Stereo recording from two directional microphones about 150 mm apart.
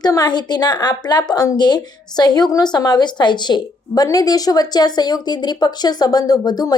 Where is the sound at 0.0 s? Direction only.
25° left (ahead or behind).